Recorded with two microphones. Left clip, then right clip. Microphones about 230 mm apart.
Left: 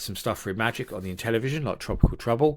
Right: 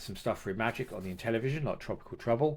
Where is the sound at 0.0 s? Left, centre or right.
Left.